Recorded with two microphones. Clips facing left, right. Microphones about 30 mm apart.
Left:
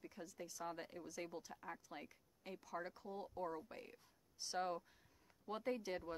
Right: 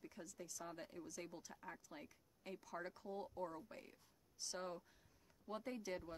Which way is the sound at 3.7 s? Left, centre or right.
Left.